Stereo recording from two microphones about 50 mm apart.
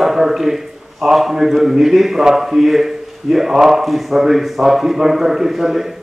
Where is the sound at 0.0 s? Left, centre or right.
Centre.